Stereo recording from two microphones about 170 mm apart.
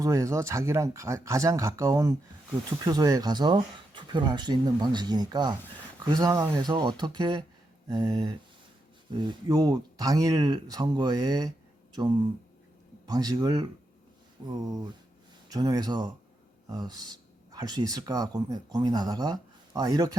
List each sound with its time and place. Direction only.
0.0 s speech: 15° right (ahead or behind)